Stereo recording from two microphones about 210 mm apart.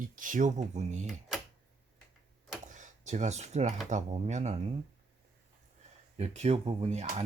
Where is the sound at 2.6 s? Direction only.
35° right (ahead or behind).